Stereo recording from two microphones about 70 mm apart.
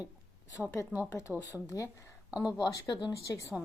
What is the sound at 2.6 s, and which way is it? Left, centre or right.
Speech, left.